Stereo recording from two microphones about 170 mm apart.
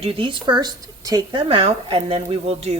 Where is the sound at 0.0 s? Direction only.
30° right (ahead or behind).